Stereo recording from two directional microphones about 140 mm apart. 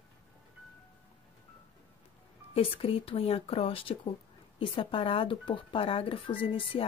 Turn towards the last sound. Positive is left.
turn(degrees=40)  # may be behind; listen again after turning